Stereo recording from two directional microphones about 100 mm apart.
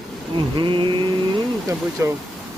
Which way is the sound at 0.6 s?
55° right (ahead or behind).